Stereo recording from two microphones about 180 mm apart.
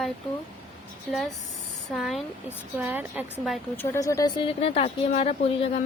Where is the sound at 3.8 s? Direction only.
15° left (ahead or behind); by 5.8 s 35° left (ahead or behind).